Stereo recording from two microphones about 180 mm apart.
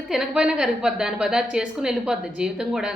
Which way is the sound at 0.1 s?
5° right (ahead or behind).